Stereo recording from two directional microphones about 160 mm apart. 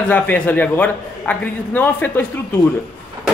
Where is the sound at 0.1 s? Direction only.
10° left (ahead or behind).